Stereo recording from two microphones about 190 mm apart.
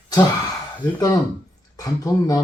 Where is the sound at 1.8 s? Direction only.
20° left (ahead or behind).